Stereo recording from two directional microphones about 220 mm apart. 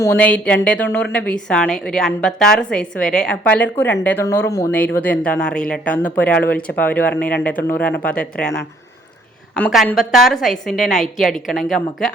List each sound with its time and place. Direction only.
0.0 s a woman's voice: 10° left (ahead or behind)
9.6 s a woman's voice: centre (ahead or behind)